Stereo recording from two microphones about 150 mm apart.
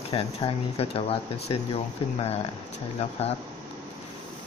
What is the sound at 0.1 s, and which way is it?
Speech, 40° left (ahead or behind).